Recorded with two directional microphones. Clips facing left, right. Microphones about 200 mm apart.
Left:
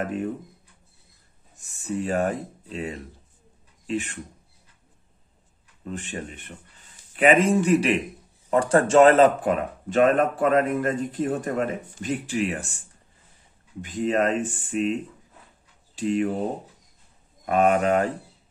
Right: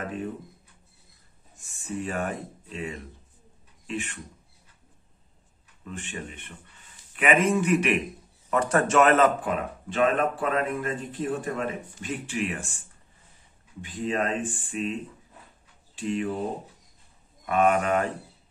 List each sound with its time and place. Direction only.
1.8 s speech: 40° left (ahead or behind)
5.9 s speech: 40° left (ahead or behind)
13.7 s speech: 45° left (ahead or behind)
15.9 s speech: 40° left (ahead or behind)
17.5 s speech: 35° left (ahead or behind)